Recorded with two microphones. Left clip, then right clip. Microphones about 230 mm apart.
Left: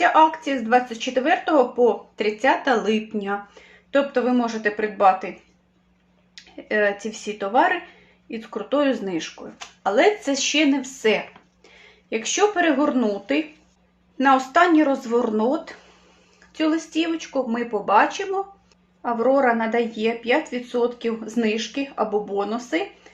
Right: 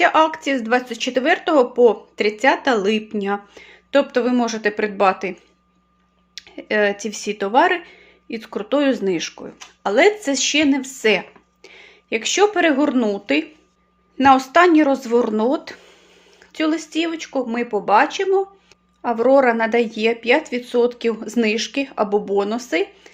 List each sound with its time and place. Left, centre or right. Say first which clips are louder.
0.0 s speech: right 1 dB; right
6.3 s speech: right 3 dB; right